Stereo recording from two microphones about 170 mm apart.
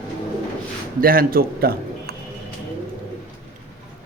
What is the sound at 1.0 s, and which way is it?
A man's voice, 60° right (ahead or behind).